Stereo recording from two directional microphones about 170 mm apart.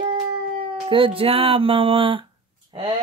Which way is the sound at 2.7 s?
25° right (ahead or behind).